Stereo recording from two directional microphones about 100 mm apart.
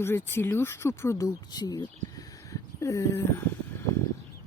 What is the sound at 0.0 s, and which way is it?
Speech, 25° left (ahead or behind).